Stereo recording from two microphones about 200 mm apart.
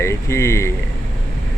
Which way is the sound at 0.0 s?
15° left (ahead or behind).